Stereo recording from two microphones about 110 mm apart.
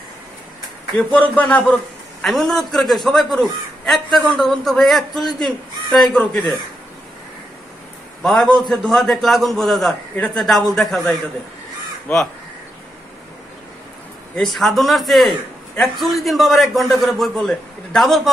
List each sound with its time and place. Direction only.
0.9 s a man's voice: 15° left (ahead or behind)
2.2 s a man's voice: centre (ahead or behind)
8.2 s a man's voice: 5° left (ahead or behind)
10.1 s a man's voice: 10° left (ahead or behind)
10.4 s a man's voice: centre (ahead or behind)
12.1 s speech: 20° left (ahead or behind)
14.3 s a man's voice: centre (ahead or behind)